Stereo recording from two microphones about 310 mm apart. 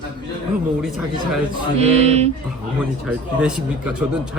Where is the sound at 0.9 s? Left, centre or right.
Centre.